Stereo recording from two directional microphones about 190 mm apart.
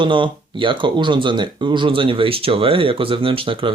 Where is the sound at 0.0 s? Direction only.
25° right (ahead or behind).